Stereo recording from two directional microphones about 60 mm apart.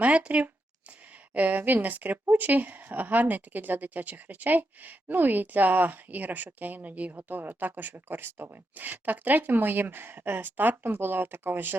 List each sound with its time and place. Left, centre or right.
0.0 s speech: right